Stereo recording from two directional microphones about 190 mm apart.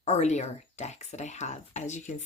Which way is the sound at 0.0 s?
35° left (ahead or behind).